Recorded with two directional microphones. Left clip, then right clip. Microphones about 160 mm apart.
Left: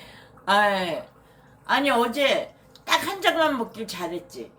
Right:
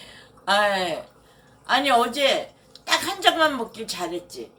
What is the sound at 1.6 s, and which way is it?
A woman's voice, centre (ahead or behind).